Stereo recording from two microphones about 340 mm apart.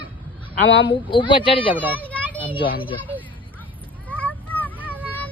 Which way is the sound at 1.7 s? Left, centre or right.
Centre.